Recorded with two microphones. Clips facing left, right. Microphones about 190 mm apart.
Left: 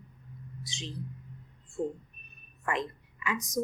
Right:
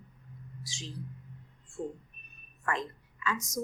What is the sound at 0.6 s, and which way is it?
Speech, 20° left (ahead or behind).